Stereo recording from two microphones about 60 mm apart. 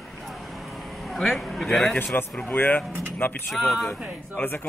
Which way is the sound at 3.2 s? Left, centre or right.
Left.